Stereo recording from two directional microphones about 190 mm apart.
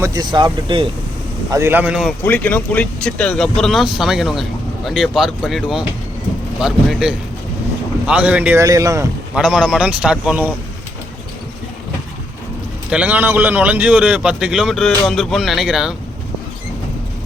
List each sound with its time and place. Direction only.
0.0 s speech: 20° right (ahead or behind)
1.5 s speech: 15° right (ahead or behind)
2.2 s a man's voice: 10° left (ahead or behind); by 9.0 s 15° right (ahead or behind)
9.3 s a man's voice: 5° right (ahead or behind)
12.9 s a man's voice: 10° right (ahead or behind)